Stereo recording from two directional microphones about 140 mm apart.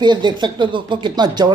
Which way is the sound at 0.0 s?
35° right (ahead or behind).